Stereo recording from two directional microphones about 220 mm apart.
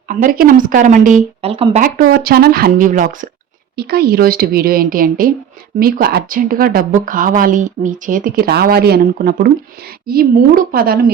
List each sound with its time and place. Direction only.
0.1 s speech: 40° right (ahead or behind)
1.8 s a woman's voice: 40° right (ahead or behind)